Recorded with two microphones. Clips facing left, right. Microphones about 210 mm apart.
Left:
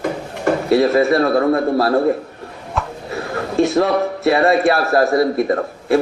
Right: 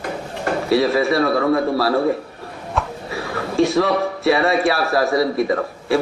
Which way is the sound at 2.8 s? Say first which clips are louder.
Even; centre (ahead or behind).